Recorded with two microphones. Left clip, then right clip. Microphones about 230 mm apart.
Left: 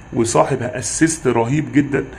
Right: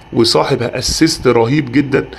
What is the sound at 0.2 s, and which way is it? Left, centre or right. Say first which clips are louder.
Speech: right 4 dB; centre.